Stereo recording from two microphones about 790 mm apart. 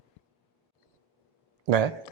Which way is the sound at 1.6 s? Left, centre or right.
Right.